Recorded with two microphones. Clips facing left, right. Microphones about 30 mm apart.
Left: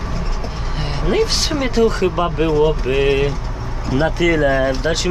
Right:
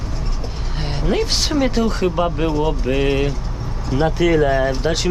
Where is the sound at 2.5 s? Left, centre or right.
Left.